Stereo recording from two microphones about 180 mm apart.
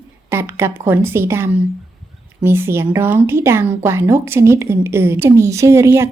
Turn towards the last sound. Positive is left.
turn(degrees=-15)  # may be behind; listen again after turning